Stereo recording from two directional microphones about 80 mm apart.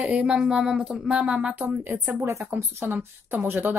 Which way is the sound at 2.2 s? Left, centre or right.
Right.